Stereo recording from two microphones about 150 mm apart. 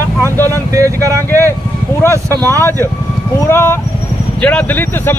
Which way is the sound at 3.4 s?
15° left (ahead or behind).